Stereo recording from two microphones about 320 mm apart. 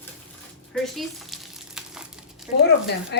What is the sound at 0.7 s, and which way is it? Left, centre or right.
Frying, centre.